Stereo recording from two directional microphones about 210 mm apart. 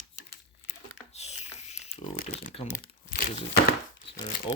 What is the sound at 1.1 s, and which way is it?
Crumpling, 30° left (ahead or behind).